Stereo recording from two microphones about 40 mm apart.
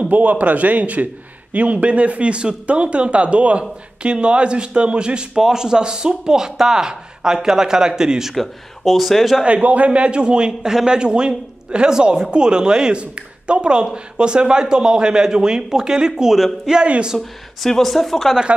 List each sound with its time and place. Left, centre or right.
0.0 s a man's voice: right; by 8.4 s centre
8.4 s speech: centre
9.4 s a man's voice: right; by 16.4 s centre
16.8 s a man's voice: right
17.2 s speech: centre